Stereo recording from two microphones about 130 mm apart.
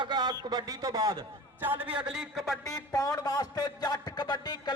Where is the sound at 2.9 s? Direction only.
30° left (ahead or behind).